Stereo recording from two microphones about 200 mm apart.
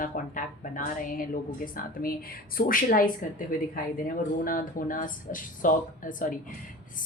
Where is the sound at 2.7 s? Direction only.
45° left (ahead or behind).